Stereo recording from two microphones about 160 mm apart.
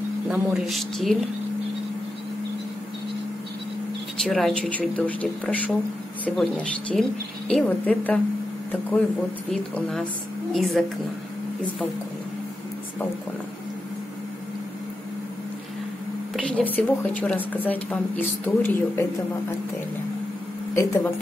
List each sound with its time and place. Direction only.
0.3 s speech: 5° right (ahead or behind)
4.2 s a woman's voice: centre (ahead or behind)
9.5 s a woman's voice: 5° left (ahead or behind)
16.3 s a woman's voice: 10° left (ahead or behind)
20.7 s a woman's voice: 15° left (ahead or behind)